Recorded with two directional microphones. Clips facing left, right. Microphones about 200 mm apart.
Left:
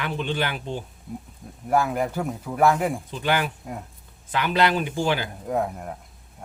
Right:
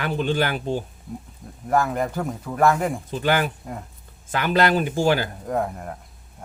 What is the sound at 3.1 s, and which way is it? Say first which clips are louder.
Speech: right 3 dB; 45° right (ahead or behind).